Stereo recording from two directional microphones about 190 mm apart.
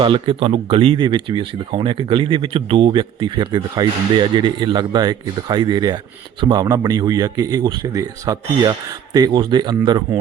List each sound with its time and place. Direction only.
0.0 s speech: 25° right (ahead or behind)